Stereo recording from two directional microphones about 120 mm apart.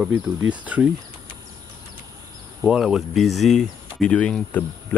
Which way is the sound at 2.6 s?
5° right (ahead or behind).